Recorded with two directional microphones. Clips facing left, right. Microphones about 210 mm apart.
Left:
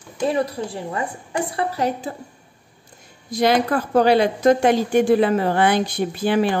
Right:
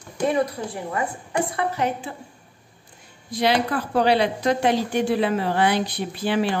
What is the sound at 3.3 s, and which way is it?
A woman's voice, 45° left (ahead or behind).